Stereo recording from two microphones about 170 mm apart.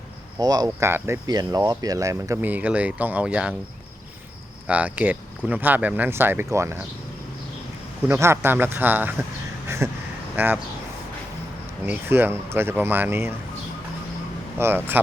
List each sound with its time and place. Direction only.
0.3 s speech: 25° right (ahead or behind); by 3.5 s 5° right (ahead or behind)
4.6 s speech: 10° right (ahead or behind)
8.0 s speech: 15° right (ahead or behind)
9.6 s a sound: 15° right (ahead or behind)
10.3 s speech: 10° right (ahead or behind)
11.9 s speech: 15° right (ahead or behind)
14.6 s speech: 15° right (ahead or behind)